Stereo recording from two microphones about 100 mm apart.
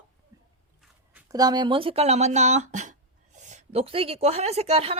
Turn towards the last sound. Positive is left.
turn(degrees=-90)